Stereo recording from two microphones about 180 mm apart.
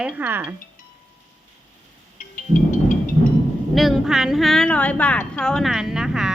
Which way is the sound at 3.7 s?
Centre (ahead or behind).